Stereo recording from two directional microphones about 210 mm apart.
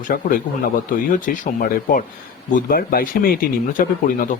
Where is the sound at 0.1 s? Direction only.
45° left (ahead or behind).